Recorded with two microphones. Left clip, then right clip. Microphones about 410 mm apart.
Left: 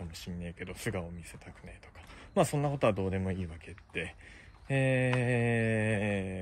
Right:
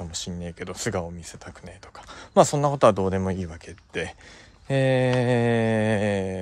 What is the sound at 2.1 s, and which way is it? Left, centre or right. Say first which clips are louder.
Speech: right 11 dB; right.